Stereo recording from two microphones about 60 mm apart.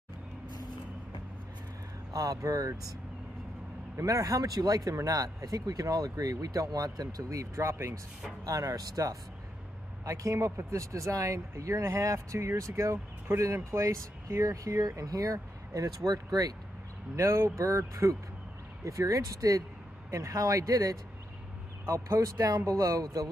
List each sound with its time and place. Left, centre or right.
2.1 s speech: right
3.9 s speech: right
4.9 s speech: right
8.5 s speech: right
10.0 s speech: right
17.1 s speech: right
20.1 s speech: right
21.8 s speech: right
22.7 s speech: right